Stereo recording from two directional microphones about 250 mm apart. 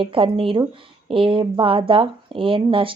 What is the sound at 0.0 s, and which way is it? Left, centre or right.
Speech, right.